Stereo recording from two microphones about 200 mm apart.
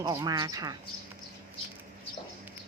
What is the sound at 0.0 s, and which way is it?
Speech, 15° right (ahead or behind).